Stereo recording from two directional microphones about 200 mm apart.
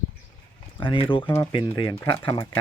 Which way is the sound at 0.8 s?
25° left (ahead or behind).